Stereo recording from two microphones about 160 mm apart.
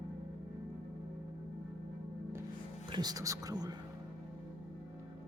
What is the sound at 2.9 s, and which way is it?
Speech, 25° right (ahead or behind).